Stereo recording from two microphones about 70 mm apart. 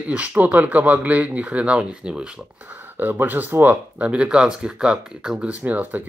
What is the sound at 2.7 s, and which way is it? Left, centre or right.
Speech, right.